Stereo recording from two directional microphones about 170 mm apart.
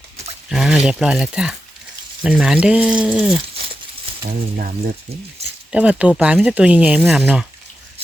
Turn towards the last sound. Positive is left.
turn(degrees=-5)  # may be behind; listen again after turning